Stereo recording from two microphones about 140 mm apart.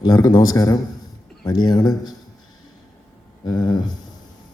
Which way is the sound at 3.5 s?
30° left (ahead or behind).